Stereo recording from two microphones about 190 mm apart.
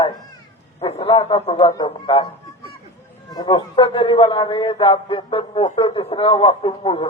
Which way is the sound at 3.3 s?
20° left (ahead or behind).